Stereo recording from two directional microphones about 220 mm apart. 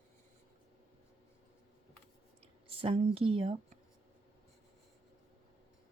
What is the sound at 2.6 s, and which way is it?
Speech, 25° right (ahead or behind).